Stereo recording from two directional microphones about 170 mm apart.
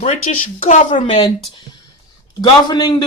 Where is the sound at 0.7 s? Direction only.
45° left (ahead or behind).